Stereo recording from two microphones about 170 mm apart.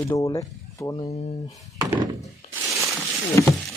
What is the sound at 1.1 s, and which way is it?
Speech, 40° left (ahead or behind).